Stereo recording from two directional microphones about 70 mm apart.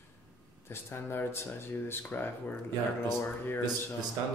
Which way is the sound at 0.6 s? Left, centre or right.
Left.